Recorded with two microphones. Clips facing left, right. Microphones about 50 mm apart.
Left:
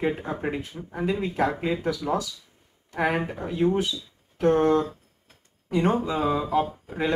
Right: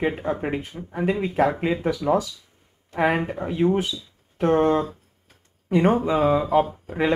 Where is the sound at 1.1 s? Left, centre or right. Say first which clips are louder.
Right 4 dB; right.